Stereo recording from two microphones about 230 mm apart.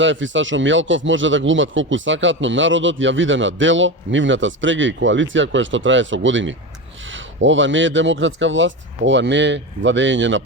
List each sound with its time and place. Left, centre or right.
0.0 s speech: right